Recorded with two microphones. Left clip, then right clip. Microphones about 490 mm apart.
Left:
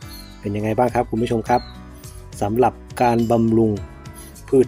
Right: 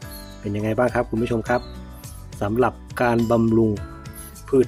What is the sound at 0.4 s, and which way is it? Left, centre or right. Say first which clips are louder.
Speech: left 2 dB; right.